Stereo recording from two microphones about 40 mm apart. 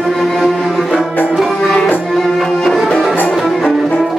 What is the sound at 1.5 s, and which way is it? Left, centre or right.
Music, left.